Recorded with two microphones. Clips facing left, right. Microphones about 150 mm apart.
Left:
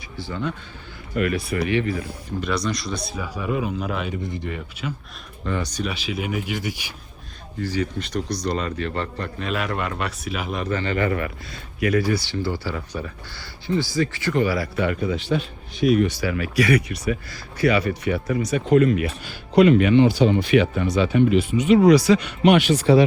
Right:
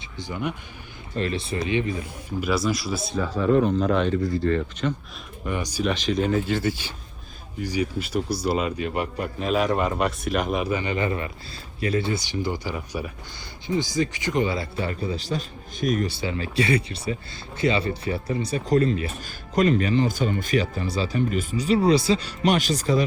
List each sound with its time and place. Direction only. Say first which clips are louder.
0.2 s speech: left 1 dB; 15° right (ahead or behind)
1.1 s speech: left 4 dB; 25° right (ahead or behind)
2.4 s a man's voice: right 2 dB; 5° right (ahead or behind)
3.2 s speech: right 7 dB; 10° left (ahead or behind)
4.2 s speech: right 7 dB; 20° left (ahead or behind)
5.5 s speech: left 1 dB; 15° right (ahead or behind)
5.8 s speech: right 4 dB; 5° left (ahead or behind)
7.6 s a man's voice: left 1 dB; 10° right (ahead or behind)
10.6 s speech: left 1 dB; 10° right (ahead or behind)
15.0 s speech: left 5 dB; 35° right (ahead or behind)
19.2 s speech: left 7 dB; 45° right (ahead or behind)